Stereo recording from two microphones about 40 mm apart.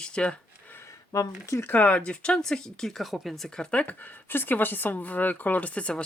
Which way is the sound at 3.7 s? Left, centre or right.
Left.